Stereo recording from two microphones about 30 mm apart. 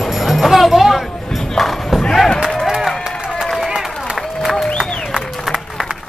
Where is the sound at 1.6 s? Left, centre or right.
Centre.